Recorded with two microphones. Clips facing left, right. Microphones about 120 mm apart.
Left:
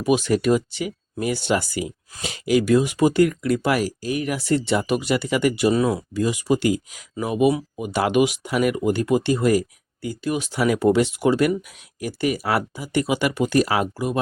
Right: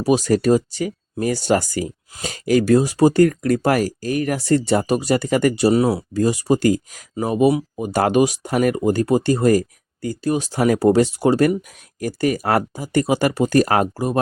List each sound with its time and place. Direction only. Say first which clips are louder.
0.0 s speech: right 3 dB; 35° right (ahead or behind)